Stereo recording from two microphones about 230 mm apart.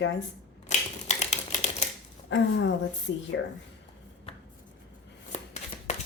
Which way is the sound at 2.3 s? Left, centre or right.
Left.